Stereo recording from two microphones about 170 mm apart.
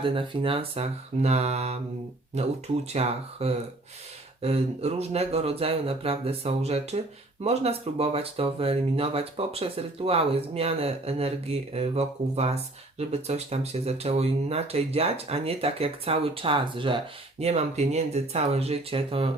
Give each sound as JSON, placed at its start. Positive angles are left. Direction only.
{"t": 0.0, "sound": "speech", "side_deg": -30}